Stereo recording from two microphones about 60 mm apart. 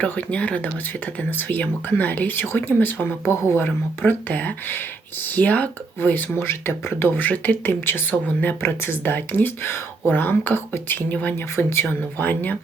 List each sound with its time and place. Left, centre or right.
0.0 s speech: left
6.4 s speech: left
7.2 s speech: left
8.6 s speech: left
11.5 s speech: left
12.2 s speech: left